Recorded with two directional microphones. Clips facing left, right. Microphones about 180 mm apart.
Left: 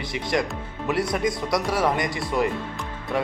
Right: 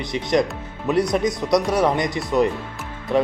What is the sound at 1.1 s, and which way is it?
A man's voice, 20° right (ahead or behind).